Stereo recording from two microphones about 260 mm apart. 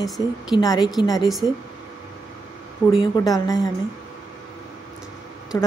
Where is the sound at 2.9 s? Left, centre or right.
Centre.